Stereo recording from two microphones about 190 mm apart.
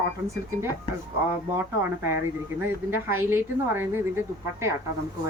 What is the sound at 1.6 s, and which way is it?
A woman's voice, 10° right (ahead or behind).